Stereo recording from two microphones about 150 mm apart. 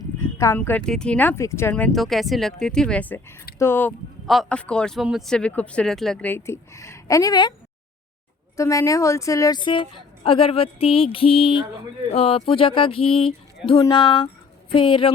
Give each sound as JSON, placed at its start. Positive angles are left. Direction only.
{"t": 0.2, "sound": "speech", "side_deg": 15}
{"t": 1.7, "sound": "speech", "side_deg": 5}
{"t": 4.3, "sound": "speech", "side_deg": 5}
{"t": 8.5, "sound": "a woman's voice", "side_deg": 20}
{"t": 9.6, "sound": "music", "side_deg": 35}